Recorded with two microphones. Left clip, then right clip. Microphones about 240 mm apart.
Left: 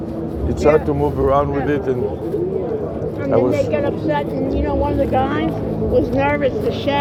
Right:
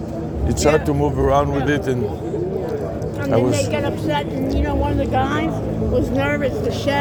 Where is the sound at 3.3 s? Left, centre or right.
Right.